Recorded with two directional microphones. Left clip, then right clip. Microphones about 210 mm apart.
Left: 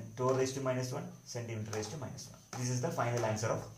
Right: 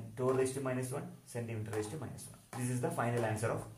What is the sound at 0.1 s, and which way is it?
Speech, 35° right (ahead or behind).